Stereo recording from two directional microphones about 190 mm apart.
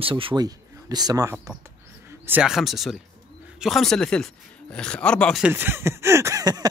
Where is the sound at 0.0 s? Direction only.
25° right (ahead or behind); by 5.5 s 5° left (ahead or behind).